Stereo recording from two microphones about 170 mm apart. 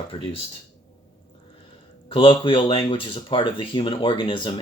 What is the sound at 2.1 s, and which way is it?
Speech, 30° left (ahead or behind).